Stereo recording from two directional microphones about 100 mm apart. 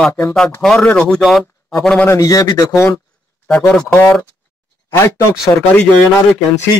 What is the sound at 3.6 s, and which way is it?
Speech, 5° left (ahead or behind).